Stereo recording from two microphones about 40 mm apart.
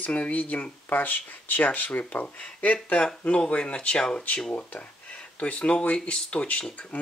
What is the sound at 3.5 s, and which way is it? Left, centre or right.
Speech, left.